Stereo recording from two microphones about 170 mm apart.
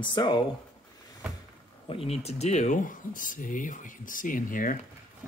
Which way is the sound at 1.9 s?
35° left (ahead or behind).